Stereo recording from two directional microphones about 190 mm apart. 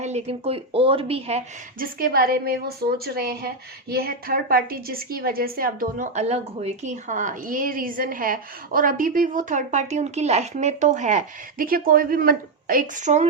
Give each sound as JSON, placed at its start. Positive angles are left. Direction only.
{"t": 0.0, "sound": "a woman's voice", "side_deg": -35}
{"t": 1.8, "sound": "a woman's voice", "side_deg": -50}